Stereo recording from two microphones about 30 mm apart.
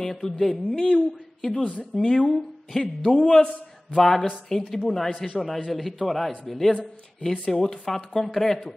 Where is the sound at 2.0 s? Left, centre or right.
Left.